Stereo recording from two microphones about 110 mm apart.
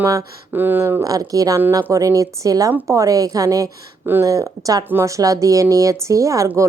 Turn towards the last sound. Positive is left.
turn(degrees=-30)  # may be behind; listen again after turning